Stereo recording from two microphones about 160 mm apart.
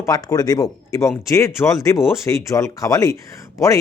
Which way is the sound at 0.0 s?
20° left (ahead or behind).